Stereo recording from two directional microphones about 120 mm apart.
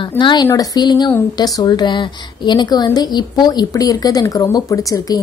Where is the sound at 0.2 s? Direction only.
40° left (ahead or behind).